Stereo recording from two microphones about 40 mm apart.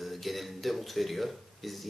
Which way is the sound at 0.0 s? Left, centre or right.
Centre.